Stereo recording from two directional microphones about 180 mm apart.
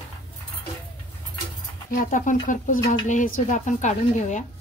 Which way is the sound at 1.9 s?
45° left (ahead or behind).